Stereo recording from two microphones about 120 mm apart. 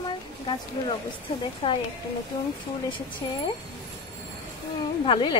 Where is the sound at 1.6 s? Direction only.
55° left (ahead or behind).